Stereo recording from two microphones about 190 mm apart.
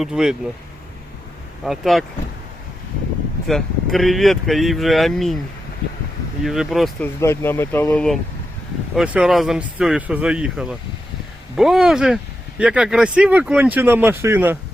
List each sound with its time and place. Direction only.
0.0 s speech: 5° right (ahead or behind)
1.6 s speech: centre (ahead or behind)
3.4 s speech: centre (ahead or behind)
6.4 s speech: centre (ahead or behind)
7.2 s speech: 15° left (ahead or behind); by 14.6 s 10° right (ahead or behind)